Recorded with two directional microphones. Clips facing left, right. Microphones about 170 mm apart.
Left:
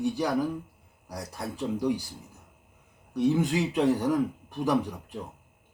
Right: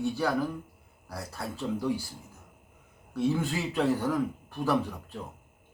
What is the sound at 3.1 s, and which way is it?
Speech, 15° left (ahead or behind).